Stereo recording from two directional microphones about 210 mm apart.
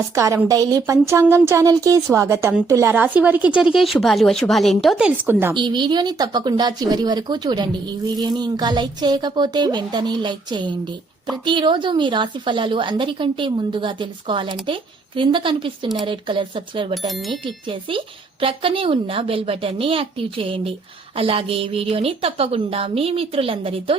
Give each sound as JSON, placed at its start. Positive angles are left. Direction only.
{"t": 0.1, "sound": "a woman's voice", "side_deg": -15}
{"t": 5.5, "sound": "speech", "side_deg": -20}
{"t": 17.1, "sound": "speech", "side_deg": 0}
{"t": 17.4, "sound": "speech", "side_deg": -25}